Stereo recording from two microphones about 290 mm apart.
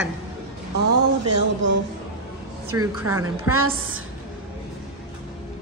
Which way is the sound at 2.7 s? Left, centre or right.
Centre.